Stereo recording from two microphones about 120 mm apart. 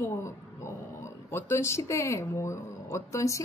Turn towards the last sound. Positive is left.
turn(degrees=25)  # may be behind; listen again after turning